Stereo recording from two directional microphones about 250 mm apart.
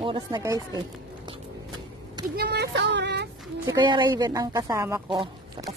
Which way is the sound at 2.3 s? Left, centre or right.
Right.